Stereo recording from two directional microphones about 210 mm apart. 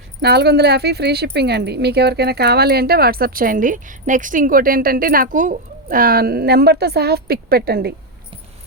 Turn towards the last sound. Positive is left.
turn(degrees=-50)  # may be behind; listen again after turning